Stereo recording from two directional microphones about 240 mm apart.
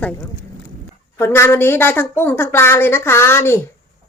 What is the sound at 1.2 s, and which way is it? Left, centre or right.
Speech, centre.